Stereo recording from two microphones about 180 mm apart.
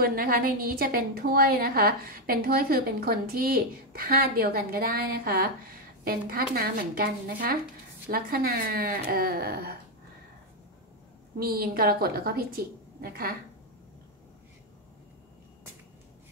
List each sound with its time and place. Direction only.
0.0 s a woman's voice: 55° right (ahead or behind)
11.3 s a woman's voice: 55° right (ahead or behind)